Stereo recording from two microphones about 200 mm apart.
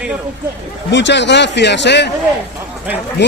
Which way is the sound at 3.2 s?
60° left (ahead or behind).